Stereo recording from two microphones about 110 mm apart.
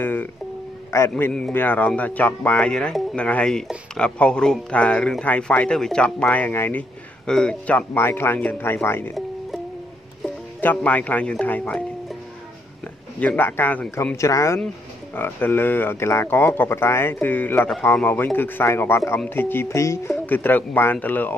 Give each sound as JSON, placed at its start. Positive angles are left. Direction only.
{"t": 0.0, "sound": "speech", "side_deg": 15}
{"t": 1.5, "sound": "speech", "side_deg": 15}
{"t": 10.6, "sound": "speech", "side_deg": 15}
{"t": 11.6, "sound": "music", "side_deg": 5}
{"t": 13.2, "sound": "speech", "side_deg": 15}
{"t": 20.2, "sound": "speech", "side_deg": 15}